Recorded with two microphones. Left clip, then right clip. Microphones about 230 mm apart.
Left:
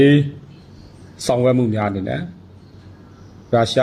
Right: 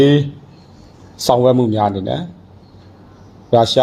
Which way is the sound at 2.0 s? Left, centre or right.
Centre.